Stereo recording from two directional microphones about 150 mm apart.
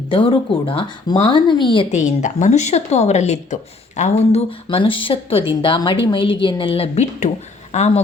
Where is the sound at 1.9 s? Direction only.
55° left (ahead or behind).